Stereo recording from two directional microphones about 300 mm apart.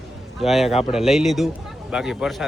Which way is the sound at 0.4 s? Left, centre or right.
Centre.